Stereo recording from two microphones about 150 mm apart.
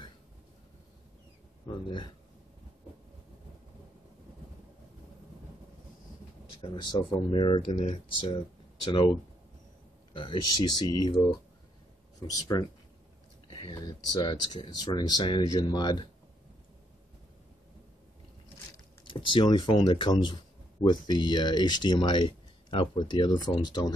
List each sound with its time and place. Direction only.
1.7 s speech: 30° left (ahead or behind)
6.6 s speech: 30° left (ahead or behind)
10.1 s speech: 35° left (ahead or behind)
19.0 s speech: 35° left (ahead or behind)